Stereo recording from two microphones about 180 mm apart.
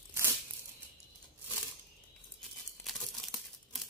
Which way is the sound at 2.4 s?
Centre (ahead or behind).